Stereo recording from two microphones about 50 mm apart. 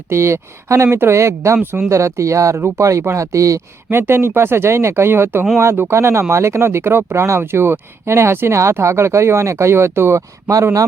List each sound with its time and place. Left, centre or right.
0.1 s speech: right
3.9 s speech: right
6.6 s speech: right